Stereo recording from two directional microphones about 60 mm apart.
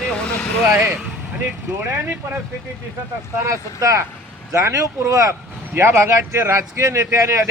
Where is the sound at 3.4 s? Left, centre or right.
Right.